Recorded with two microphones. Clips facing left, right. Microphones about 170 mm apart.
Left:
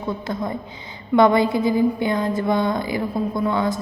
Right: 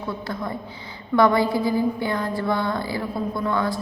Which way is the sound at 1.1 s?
20° left (ahead or behind).